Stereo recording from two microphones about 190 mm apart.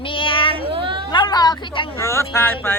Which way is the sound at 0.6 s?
30° right (ahead or behind).